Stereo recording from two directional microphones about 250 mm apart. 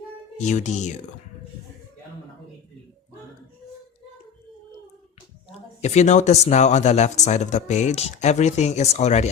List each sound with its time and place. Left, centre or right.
0.3 s speech: left
5.5 s speech: left